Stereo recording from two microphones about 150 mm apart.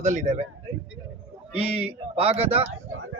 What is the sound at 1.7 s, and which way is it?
Speech, 40° right (ahead or behind).